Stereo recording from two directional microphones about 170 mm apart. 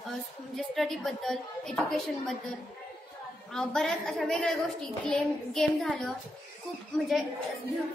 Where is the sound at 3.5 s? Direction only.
5° left (ahead or behind).